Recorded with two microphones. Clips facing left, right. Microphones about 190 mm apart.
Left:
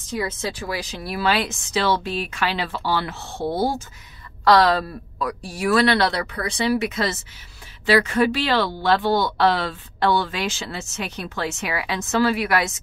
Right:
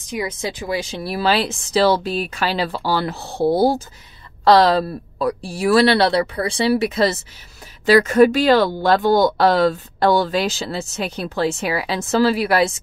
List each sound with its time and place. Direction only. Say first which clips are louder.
0.0 s speech: right 1 dB; 15° right (ahead or behind); by 12.7 s 30° right (ahead or behind)